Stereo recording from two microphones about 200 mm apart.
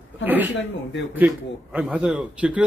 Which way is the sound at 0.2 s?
10° right (ahead or behind).